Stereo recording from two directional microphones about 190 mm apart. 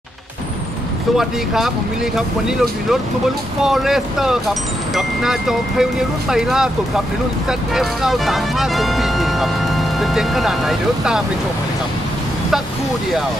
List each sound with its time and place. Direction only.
1.1 s speech: centre (ahead or behind)